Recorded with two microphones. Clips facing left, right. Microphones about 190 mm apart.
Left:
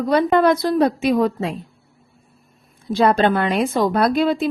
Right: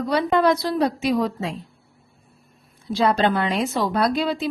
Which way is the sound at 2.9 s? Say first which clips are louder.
Left 3 dB; 55° left (ahead or behind).